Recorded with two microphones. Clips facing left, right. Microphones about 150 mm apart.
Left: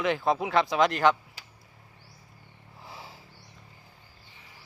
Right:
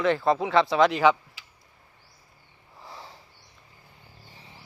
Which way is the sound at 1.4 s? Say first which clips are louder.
Left 2 dB; 40° left (ahead or behind).